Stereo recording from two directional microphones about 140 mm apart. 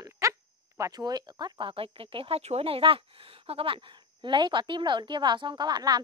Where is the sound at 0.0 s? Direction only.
25° right (ahead or behind).